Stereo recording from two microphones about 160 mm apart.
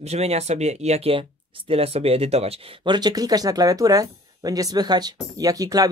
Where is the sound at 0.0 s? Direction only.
40° right (ahead or behind).